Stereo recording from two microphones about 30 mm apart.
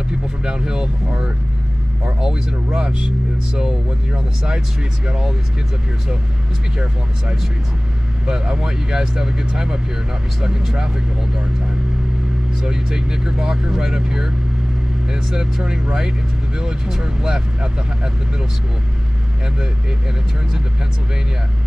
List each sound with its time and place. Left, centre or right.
0.4 s speech: right
2.1 s speech: centre
8.3 s speech: right
12.6 s speech: right
15.6 s speech: right